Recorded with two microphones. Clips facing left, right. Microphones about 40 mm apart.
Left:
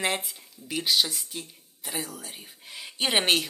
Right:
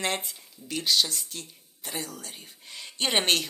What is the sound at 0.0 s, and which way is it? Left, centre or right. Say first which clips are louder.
Speech: left 2 dB; centre.